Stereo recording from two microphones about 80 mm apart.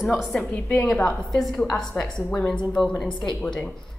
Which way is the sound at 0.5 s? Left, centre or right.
Left.